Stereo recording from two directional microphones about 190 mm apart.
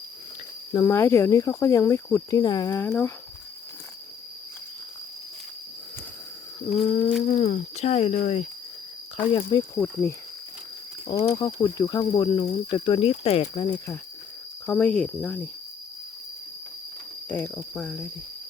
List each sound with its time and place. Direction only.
0.7 s speech: 15° left (ahead or behind)
6.7 s speech: 35° left (ahead or behind)
9.1 s speech: 25° left (ahead or behind)
9.7 s speech: 10° left (ahead or behind)
11.2 s speech: 25° left (ahead or behind)
14.7 s speech: 5° left (ahead or behind)
17.2 s speech: 10° left (ahead or behind)